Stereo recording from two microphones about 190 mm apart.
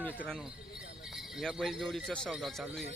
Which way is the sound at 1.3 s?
Centre (ahead or behind).